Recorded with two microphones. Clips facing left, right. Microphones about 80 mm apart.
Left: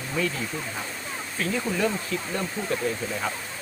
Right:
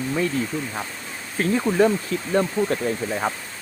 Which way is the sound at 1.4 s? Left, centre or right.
Right.